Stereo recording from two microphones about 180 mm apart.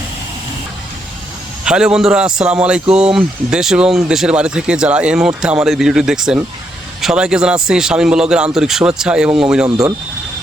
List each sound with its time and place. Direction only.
1.6 s speech: 5° right (ahead or behind)
9.6 s speech: 20° right (ahead or behind)